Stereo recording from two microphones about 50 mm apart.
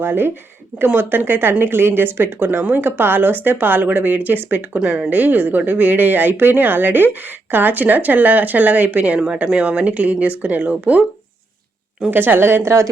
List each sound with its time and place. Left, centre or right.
0.0 s speech: right
4.8 s speech: right
5.0 s speech: right
12.1 s speech: right